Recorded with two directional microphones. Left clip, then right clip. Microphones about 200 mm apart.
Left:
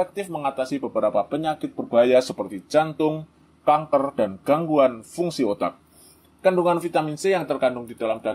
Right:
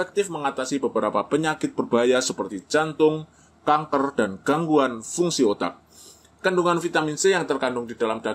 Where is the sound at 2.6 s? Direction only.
25° left (ahead or behind).